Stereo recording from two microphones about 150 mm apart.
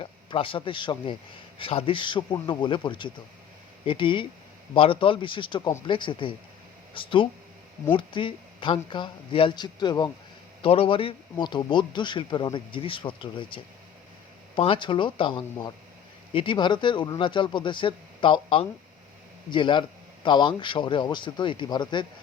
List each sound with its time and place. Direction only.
0.0 s speech: 35° left (ahead or behind)